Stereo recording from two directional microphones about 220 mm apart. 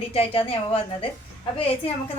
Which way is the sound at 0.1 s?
25° left (ahead or behind).